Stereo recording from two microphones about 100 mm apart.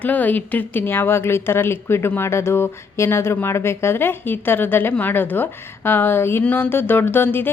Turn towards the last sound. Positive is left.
turn(degrees=20)  # may be behind; listen again after turning